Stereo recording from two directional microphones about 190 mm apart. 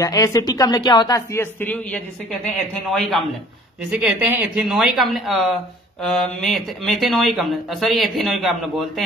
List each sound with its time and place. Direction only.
0.0 s speech: 20° left (ahead or behind); by 9.0 s centre (ahead or behind)